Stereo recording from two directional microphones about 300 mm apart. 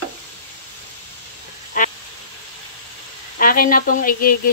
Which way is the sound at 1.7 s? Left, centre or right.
Left.